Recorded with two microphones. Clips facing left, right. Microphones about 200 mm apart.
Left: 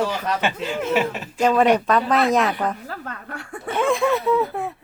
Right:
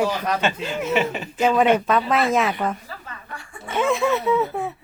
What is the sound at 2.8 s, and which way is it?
Chuckle, 65° left (ahead or behind).